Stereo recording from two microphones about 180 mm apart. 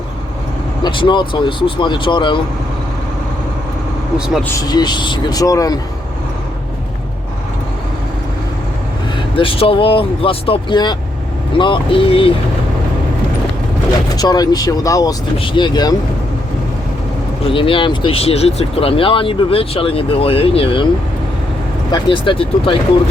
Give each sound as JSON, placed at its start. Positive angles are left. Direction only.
{"t": 0.9, "sound": "speech", "side_deg": 25}
{"t": 4.5, "sound": "speech", "side_deg": 20}
{"t": 9.1, "sound": "speech", "side_deg": 30}
{"t": 14.2, "sound": "speech", "side_deg": 20}
{"t": 17.4, "sound": "speech", "side_deg": 30}
{"t": 21.9, "sound": "speech", "side_deg": 25}